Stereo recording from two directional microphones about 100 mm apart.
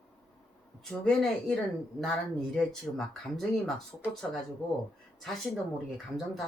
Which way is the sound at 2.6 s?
5° left (ahead or behind).